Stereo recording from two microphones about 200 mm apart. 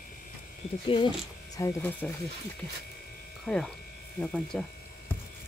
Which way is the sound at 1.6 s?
15° left (ahead or behind).